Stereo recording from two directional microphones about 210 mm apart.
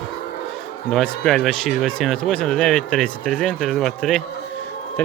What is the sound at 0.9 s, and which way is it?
Speech, centre (ahead or behind).